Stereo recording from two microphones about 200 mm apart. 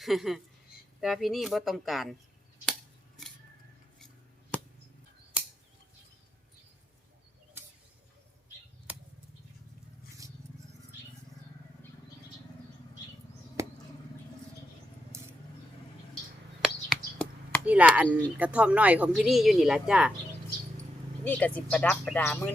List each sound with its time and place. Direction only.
0.0 s speech: centre (ahead or behind)
8.9 s a sound: 5° right (ahead or behind)
10.2 s a sound: 15° right (ahead or behind)
15.1 s scissors: 15° right (ahead or behind)
16.6 s speech: centre (ahead or behind)
21.2 s speech: 10° left (ahead or behind)